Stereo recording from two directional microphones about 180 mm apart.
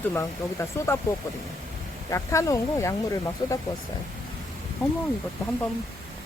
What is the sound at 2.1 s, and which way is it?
Speech, 15° left (ahead or behind).